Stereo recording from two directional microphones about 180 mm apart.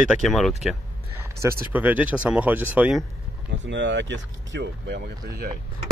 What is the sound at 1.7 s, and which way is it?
Speech, 10° right (ahead or behind).